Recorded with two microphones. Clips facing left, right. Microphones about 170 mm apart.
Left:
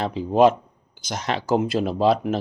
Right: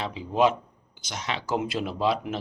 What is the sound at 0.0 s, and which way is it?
Speech, 40° left (ahead or behind).